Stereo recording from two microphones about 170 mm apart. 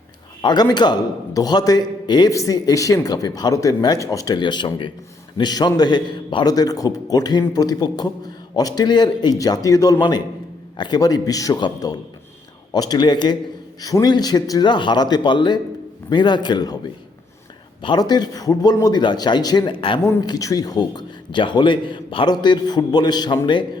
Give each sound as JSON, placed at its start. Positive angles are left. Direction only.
{"t": 0.4, "sound": "a man's voice", "side_deg": 25}